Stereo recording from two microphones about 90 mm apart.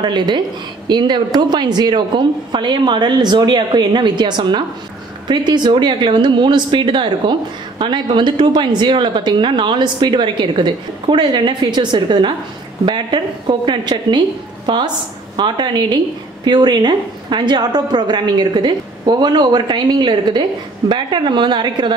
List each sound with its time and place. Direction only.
0.0 s speech: 60° right (ahead or behind)